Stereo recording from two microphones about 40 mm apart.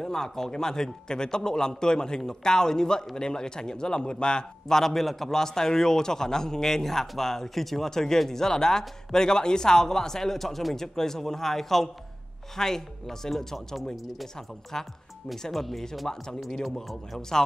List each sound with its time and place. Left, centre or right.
0.0 s a man's voice: centre
13.9 s speech: centre
14.3 s a man's voice: centre
16.7 s speech: centre